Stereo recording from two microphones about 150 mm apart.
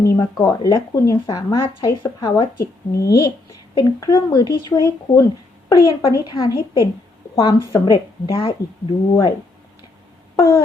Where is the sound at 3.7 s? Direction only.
25° left (ahead or behind).